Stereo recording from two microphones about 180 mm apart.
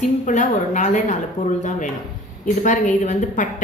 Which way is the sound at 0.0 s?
40° left (ahead or behind).